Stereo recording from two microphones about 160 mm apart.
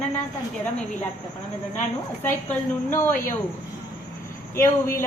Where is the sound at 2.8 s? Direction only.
15° left (ahead or behind).